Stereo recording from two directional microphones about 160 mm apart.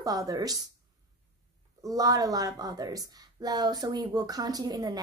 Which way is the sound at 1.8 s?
20° right (ahead or behind).